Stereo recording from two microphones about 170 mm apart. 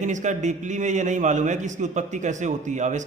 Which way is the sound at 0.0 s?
45° right (ahead or behind).